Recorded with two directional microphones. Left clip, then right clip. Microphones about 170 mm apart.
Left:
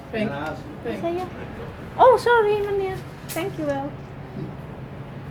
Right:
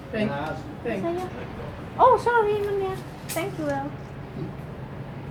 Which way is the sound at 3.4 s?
20° left (ahead or behind).